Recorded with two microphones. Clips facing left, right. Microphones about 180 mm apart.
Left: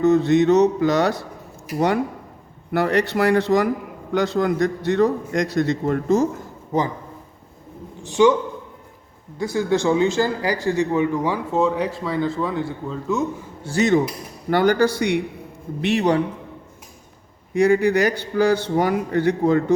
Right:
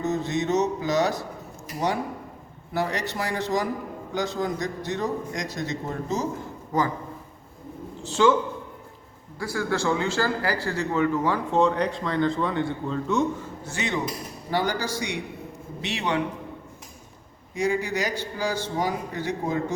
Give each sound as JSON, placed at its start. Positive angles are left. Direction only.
{"t": 0.0, "sound": "a man's voice", "side_deg": 65}
{"t": 2.7, "sound": "a man's voice", "side_deg": 60}
{"t": 6.7, "sound": "a man's voice", "side_deg": 20}
{"t": 8.0, "sound": "a man's voice", "side_deg": 15}
{"t": 9.4, "sound": "a man's voice", "side_deg": 20}
{"t": 13.7, "sound": "speech", "side_deg": 40}
{"t": 14.5, "sound": "a man's voice", "side_deg": 60}
{"t": 17.5, "sound": "a man's voice", "side_deg": 60}